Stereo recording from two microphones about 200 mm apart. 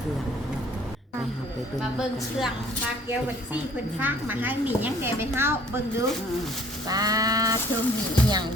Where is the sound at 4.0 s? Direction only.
10° right (ahead or behind).